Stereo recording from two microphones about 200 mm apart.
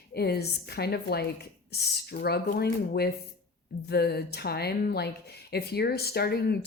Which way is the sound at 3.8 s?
55° left (ahead or behind).